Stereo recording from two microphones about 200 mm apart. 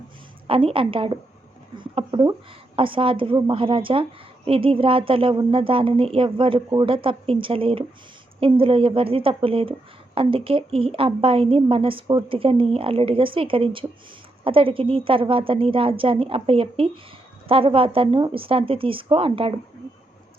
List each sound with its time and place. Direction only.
0.4 s a woman's voice: 25° right (ahead or behind)